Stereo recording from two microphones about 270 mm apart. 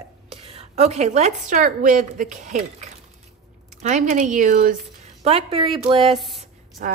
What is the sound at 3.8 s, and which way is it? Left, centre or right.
A woman's voice, right.